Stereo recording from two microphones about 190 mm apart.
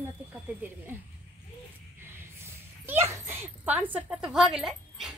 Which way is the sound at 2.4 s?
15° right (ahead or behind).